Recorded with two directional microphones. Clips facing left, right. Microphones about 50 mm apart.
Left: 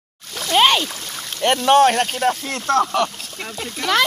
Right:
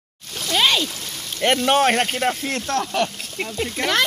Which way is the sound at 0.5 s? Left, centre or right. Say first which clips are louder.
Left 4 dB; left.